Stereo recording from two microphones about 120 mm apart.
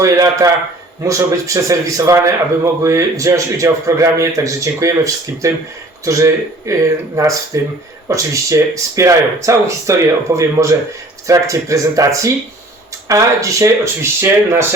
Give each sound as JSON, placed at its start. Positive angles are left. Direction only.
{"t": 0.0, "sound": "a man's voice", "side_deg": -25}